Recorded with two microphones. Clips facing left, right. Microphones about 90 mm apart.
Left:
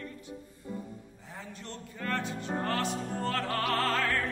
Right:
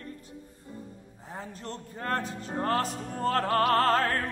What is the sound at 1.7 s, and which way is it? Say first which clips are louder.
Music: right 3 dB; 40° right (ahead or behind).